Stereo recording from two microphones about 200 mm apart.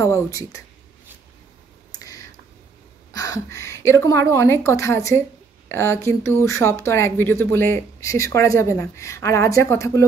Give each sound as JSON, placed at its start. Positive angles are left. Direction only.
{"t": 0.0, "sound": "speech", "side_deg": 15}
{"t": 2.0, "sound": "clicking", "side_deg": 15}
{"t": 3.1, "sound": "speech", "side_deg": 15}